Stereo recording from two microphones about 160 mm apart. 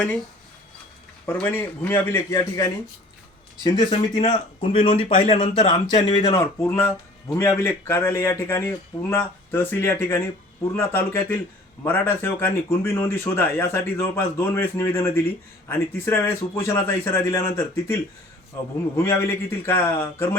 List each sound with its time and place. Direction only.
1.3 s speech: 10° left (ahead or behind)